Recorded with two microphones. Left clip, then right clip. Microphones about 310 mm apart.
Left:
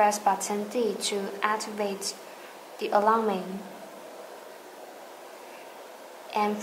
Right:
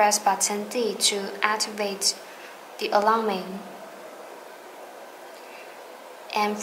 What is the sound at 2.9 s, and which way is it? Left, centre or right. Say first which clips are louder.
Speech: right 2 dB; centre.